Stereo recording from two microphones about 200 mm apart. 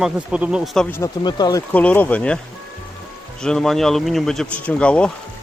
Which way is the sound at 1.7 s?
10° left (ahead or behind).